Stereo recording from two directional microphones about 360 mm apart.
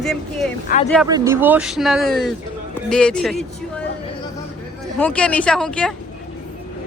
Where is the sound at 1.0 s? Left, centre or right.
Centre.